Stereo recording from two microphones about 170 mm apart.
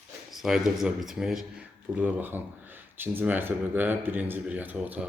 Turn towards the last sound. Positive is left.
turn(degrees=-10)  # may be behind; listen again after turning